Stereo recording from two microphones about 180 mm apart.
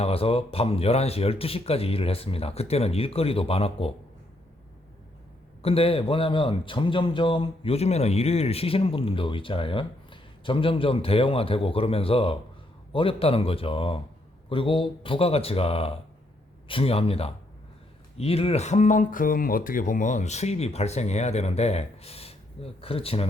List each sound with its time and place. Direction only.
0.0 s a man's voice: 30° left (ahead or behind)
5.6 s a man's voice: 30° left (ahead or behind)